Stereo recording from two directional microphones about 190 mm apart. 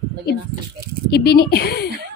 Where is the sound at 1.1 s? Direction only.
55° left (ahead or behind).